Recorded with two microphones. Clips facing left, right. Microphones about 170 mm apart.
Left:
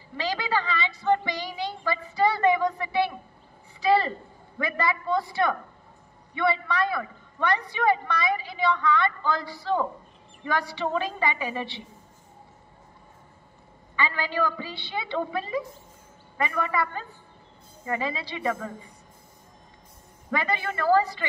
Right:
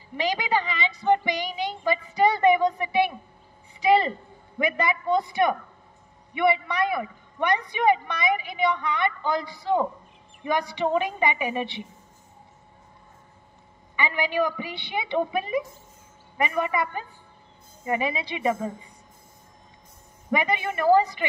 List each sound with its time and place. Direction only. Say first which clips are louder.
0.2 s speech: right 2 dB; 20° right (ahead or behind)
3.8 s a sound: right 2 dB; 20° right (ahead or behind)
4.6 s a man's voice: right 2 dB; 20° right (ahead or behind)
13.9 s a man's voice: right 3 dB; 20° right (ahead or behind)
20.2 s a man's voice: right 3 dB; 20° right (ahead or behind)